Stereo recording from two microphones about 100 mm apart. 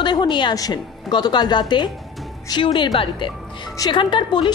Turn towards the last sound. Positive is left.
turn(degrees=55)  # may be behind; listen again after turning